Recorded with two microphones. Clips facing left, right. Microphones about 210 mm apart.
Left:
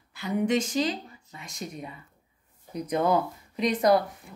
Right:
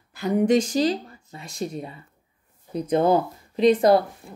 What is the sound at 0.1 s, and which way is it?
A woman's voice, 45° right (ahead or behind).